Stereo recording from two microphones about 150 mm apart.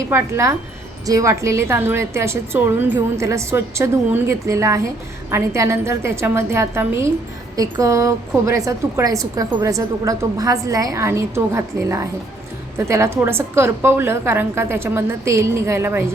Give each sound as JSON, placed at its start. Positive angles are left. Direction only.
{"t": 0.1, "sound": "a woman's voice", "side_deg": -15}